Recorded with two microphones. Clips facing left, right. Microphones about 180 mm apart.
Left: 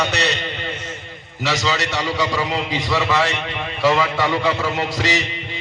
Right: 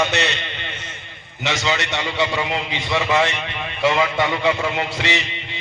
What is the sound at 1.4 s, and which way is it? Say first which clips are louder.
A man's voice: left 1 dB; 35° left (ahead or behind).